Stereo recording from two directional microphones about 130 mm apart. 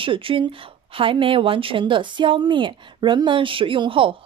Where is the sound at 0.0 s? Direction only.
40° right (ahead or behind).